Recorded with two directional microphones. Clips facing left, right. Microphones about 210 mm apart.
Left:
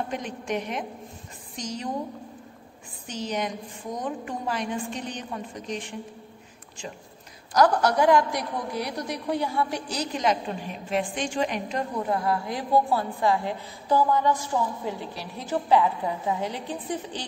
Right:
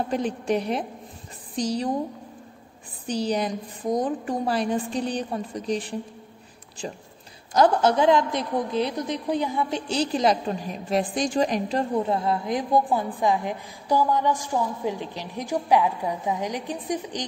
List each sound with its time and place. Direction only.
0.1 s a woman's voice: 35° right (ahead or behind)
3.1 s a woman's voice: 35° right (ahead or behind)
7.5 s a woman's voice: 25° right (ahead or behind)